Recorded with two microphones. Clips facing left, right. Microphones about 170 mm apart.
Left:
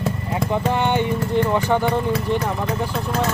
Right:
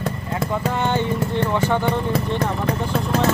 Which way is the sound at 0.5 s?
20° left (ahead or behind).